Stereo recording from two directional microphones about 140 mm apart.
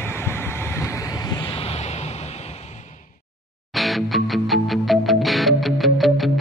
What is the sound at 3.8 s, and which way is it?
Music, centre (ahead or behind).